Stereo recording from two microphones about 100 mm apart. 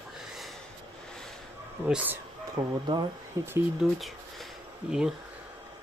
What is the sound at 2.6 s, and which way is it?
Speech, 45° right (ahead or behind).